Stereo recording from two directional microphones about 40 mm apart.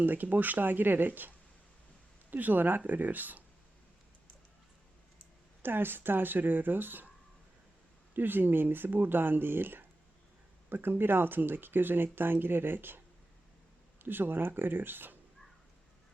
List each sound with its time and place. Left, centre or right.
0.0 s speech: right
2.3 s speech: right
5.6 s speech: right
8.1 s speech: right
14.0 s speech: right